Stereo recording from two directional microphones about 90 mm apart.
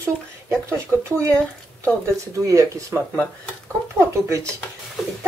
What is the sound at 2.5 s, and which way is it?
Speech, 35° right (ahead or behind).